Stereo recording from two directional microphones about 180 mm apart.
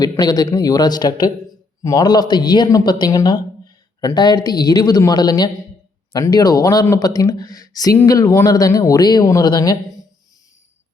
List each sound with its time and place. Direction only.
0.0 s speech: 20° left (ahead or behind)